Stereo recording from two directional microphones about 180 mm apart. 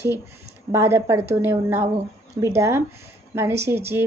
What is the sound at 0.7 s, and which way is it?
A woman's voice, 15° right (ahead or behind).